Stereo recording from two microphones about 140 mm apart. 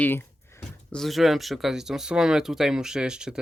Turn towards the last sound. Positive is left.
turn(degrees=-5)  # may be behind; listen again after turning